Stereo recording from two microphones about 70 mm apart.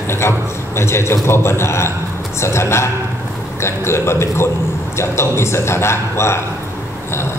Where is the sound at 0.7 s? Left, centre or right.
Left.